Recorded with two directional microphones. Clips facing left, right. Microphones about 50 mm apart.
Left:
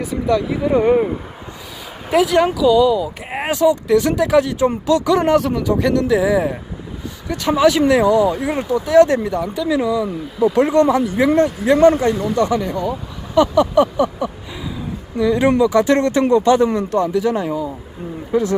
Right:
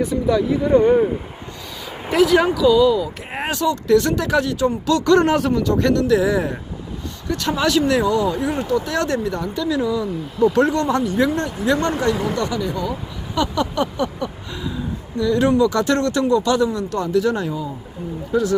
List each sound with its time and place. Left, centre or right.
0.0 s speech: centre
2.0 s speech: centre
5.1 s speech: centre
11.3 s speech: left
12.9 s speech: centre
17.1 s speech: centre